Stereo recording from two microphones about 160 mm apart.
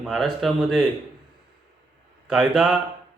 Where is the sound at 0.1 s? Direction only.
Centre (ahead or behind).